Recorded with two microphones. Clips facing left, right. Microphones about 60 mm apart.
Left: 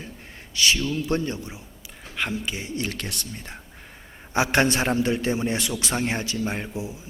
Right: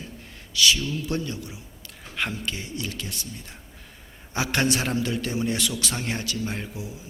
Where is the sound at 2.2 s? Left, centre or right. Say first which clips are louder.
Left 1 dB; centre.